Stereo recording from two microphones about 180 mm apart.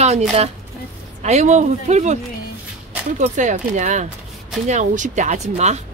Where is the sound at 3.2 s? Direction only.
45° right (ahead or behind).